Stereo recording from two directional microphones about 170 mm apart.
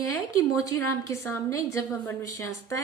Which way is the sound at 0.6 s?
15° left (ahead or behind).